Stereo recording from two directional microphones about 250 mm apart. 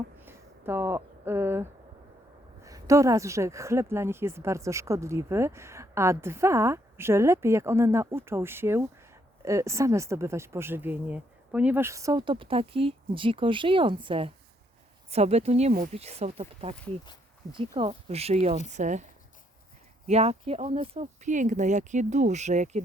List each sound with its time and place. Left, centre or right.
0.2 s a sound: centre
2.6 s speech: centre; by 19.0 s right
20.1 s speech: right